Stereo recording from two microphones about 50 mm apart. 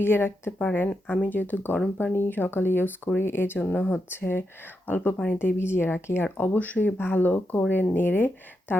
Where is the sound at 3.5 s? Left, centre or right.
Left.